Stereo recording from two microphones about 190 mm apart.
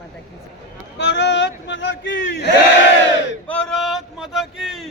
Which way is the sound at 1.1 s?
65° left (ahead or behind).